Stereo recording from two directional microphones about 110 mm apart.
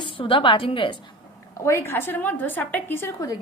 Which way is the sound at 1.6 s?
25° left (ahead or behind).